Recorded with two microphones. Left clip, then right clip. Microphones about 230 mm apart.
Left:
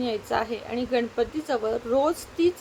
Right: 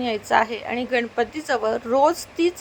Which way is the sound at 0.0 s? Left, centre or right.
Centre.